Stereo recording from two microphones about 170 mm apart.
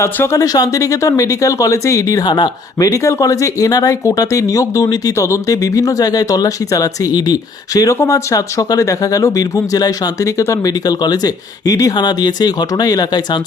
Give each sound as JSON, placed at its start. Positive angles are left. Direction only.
{"t": 0.0, "sound": "speech", "side_deg": 15}